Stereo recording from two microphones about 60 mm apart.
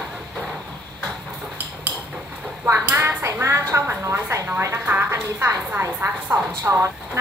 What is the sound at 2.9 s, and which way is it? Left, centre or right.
A woman's voice, right.